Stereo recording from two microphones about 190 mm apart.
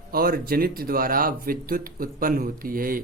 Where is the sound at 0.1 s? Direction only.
50° right (ahead or behind).